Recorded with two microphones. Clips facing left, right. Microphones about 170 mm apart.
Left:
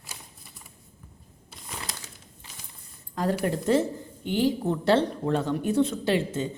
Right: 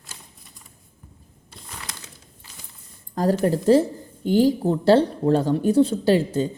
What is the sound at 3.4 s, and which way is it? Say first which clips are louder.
A woman's voice: right 7 dB; 35° right (ahead or behind).